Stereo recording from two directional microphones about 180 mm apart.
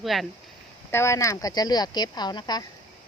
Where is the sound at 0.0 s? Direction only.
Centre (ahead or behind).